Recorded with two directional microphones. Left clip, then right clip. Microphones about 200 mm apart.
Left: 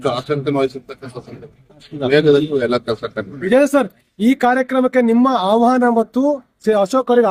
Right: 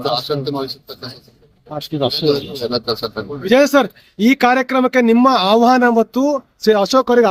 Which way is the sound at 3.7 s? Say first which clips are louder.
Right 2 dB; 25° right (ahead or behind).